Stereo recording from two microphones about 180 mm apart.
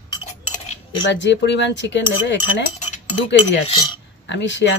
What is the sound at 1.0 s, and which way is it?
Cutlery, 80° left.